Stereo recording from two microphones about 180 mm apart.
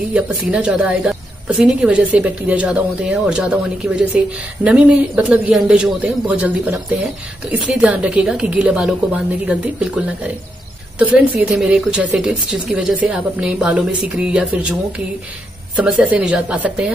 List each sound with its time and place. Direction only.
0.1 s a woman's voice: 5° right (ahead or behind)